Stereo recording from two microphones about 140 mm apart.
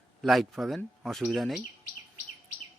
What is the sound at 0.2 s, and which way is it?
Speech, centre (ahead or behind).